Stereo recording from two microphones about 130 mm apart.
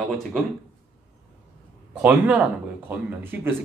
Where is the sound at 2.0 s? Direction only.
5° right (ahead or behind).